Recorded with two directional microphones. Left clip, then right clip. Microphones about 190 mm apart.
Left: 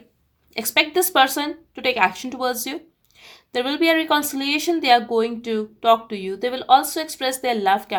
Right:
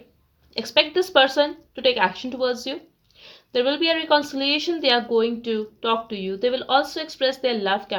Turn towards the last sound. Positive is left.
turn(degrees=40)  # may be behind; listen again after turning